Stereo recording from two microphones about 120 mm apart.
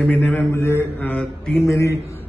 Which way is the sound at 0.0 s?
15° left (ahead or behind).